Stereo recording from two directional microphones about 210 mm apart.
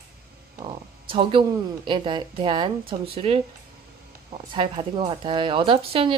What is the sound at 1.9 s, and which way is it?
Speech, 20° right (ahead or behind).